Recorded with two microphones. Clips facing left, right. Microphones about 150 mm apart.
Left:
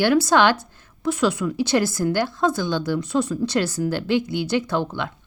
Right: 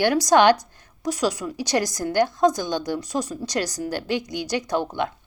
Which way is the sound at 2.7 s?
15° right (ahead or behind).